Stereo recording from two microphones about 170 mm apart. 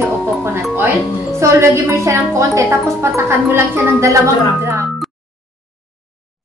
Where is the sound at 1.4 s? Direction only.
20° right (ahead or behind).